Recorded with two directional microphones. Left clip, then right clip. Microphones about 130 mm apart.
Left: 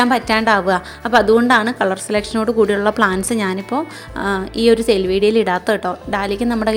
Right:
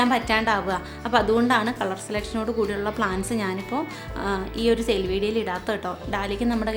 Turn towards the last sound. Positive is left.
turn(degrees=50)  # may be behind; listen again after turning